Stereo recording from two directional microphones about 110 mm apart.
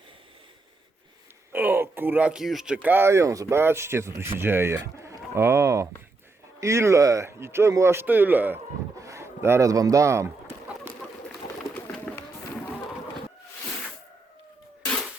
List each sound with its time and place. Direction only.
1.5 s speech: 20° right (ahead or behind)